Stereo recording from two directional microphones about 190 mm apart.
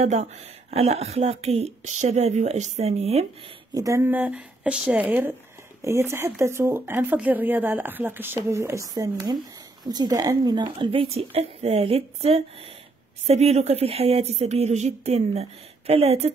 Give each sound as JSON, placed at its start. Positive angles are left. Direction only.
{"t": 0.0, "sound": "speech", "side_deg": -35}
{"t": 3.7, "sound": "speech", "side_deg": -15}